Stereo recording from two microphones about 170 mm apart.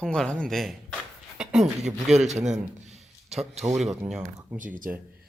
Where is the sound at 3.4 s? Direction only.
Centre (ahead or behind).